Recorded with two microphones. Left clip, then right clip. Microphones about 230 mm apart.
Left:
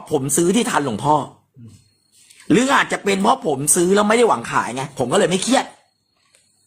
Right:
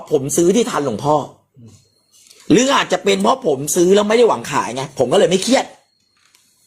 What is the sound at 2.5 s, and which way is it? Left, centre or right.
Speech, centre.